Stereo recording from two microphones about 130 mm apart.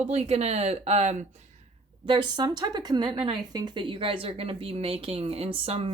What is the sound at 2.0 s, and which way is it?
A woman's voice, 35° right (ahead or behind).